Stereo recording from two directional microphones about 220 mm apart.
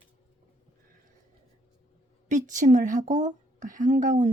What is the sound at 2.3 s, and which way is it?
A woman's voice, 35° right (ahead or behind).